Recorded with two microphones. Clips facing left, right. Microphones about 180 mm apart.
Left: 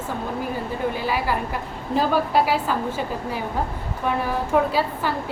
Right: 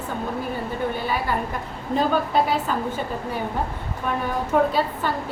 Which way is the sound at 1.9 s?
5° left (ahead or behind).